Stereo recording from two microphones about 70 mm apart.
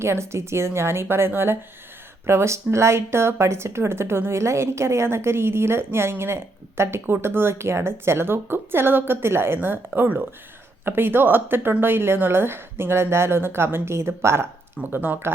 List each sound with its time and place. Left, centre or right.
0.0 s a woman's voice: right
14.8 s speech: right